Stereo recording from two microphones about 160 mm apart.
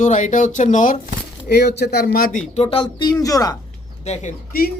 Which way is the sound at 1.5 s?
90° left.